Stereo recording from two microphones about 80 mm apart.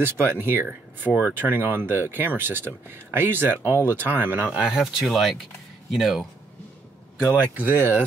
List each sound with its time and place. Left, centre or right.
0.0 s speech: right
4.6 s speech: centre
7.5 s speech: right